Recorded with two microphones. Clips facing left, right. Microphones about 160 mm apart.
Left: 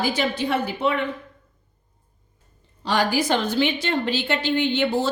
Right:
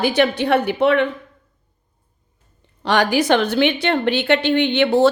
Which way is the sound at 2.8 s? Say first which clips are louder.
Right 4 dB; 70° right (ahead or behind).